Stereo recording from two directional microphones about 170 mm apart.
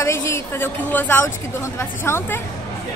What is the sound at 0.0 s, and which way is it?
A woman's voice, 15° left (ahead or behind).